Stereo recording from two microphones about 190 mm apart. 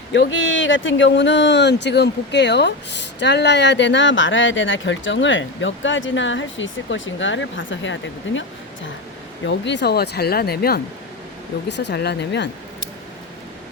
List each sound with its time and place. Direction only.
0.1 s speech: 75° left (ahead or behind)
9.5 s speech: 65° left (ahead or behind)
11.7 s speech: 65° left (ahead or behind)